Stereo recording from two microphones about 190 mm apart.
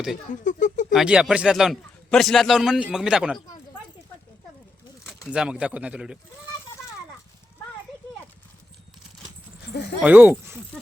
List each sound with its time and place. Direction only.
0.4 s speech: 40° left (ahead or behind)
0.9 s a man's voice: 5° right (ahead or behind)
5.3 s a man's voice: 5° right (ahead or behind)
10.0 s speech: 10° right (ahead or behind)